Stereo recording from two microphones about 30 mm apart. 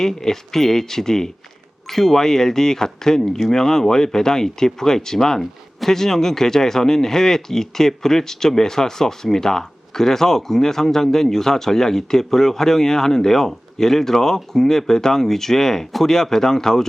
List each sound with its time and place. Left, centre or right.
0.0 s speech: centre